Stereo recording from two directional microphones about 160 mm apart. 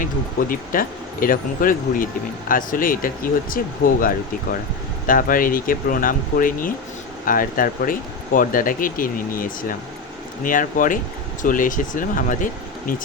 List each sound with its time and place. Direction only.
0.0 s speech: 60° left (ahead or behind)